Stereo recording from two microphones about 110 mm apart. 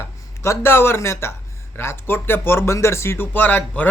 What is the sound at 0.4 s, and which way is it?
Speech, 25° left (ahead or behind).